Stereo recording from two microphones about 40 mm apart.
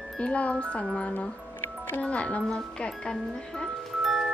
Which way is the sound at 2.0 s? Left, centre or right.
Left.